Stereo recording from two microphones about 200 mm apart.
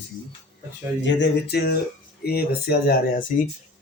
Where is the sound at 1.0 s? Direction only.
60° left (ahead or behind).